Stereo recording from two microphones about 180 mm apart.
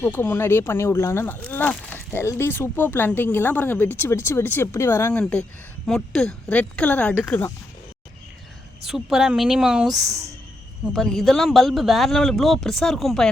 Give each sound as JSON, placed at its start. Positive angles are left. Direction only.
{"t": 0.0, "sound": "speech", "side_deg": 10}
{"t": 8.9, "sound": "a man's voice", "side_deg": -5}
{"t": 10.1, "sound": "speech", "side_deg": -15}
{"t": 10.9, "sound": "a man's voice", "side_deg": 0}